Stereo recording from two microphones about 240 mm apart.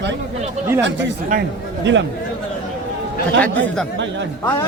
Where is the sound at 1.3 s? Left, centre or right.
Right.